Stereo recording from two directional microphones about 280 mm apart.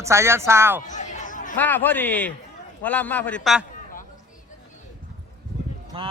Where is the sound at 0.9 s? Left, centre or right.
Left.